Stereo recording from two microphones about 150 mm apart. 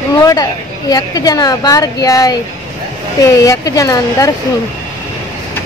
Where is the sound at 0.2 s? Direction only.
25° left (ahead or behind).